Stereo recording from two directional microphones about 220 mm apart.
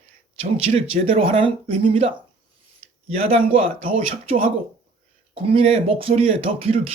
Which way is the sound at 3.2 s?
25° right (ahead or behind).